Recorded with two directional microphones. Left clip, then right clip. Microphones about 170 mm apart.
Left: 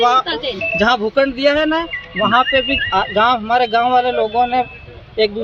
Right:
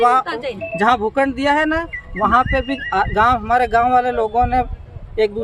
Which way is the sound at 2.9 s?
20° right (ahead or behind).